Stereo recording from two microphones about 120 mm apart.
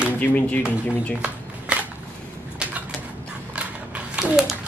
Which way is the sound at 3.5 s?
10° right (ahead or behind).